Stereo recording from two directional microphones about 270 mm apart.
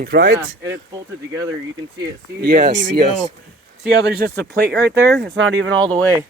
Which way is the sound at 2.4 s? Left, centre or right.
Right.